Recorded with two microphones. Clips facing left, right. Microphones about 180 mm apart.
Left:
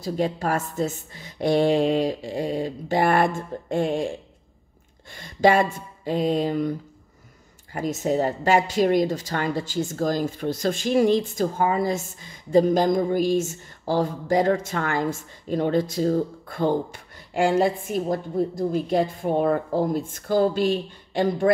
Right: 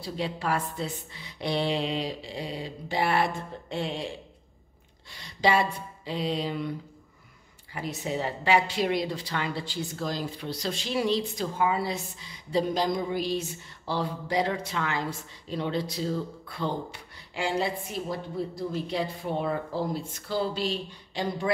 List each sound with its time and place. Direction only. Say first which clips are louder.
0.0 s a woman's voice: left 7 dB; 45° left (ahead or behind)